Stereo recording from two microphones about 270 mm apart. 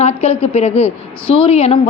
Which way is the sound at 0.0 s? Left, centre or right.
Left.